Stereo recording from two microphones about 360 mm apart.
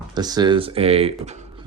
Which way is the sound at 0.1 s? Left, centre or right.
Centre.